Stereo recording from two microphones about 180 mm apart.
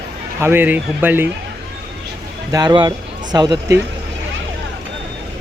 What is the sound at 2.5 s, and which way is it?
A man's voice, 20° right (ahead or behind).